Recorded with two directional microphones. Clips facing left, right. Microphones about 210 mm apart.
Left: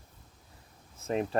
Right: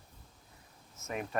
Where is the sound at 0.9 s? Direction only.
30° left (ahead or behind).